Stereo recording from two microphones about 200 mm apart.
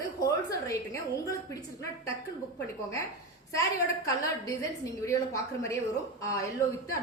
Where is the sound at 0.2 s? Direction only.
15° left (ahead or behind).